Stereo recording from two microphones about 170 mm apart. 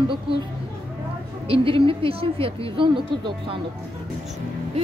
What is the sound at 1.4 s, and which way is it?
A woman's voice, 30° right (ahead or behind).